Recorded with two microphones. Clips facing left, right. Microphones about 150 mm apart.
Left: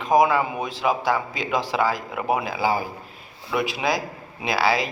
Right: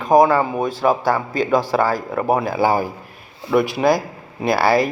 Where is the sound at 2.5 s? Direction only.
50° right (ahead or behind).